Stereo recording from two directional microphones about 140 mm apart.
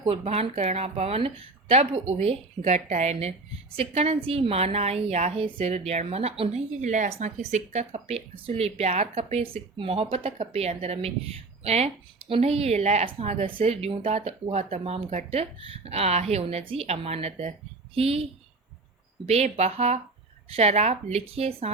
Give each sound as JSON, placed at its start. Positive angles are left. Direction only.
{"t": 0.1, "sound": "a woman's voice", "side_deg": -50}